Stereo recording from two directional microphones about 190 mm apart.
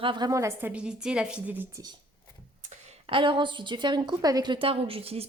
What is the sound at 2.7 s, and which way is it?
A woman's voice, 30° right (ahead or behind).